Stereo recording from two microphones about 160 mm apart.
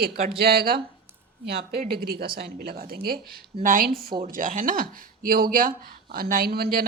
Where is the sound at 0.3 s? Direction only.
75° right (ahead or behind).